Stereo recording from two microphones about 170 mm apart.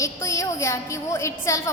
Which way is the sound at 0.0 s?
20° left (ahead or behind).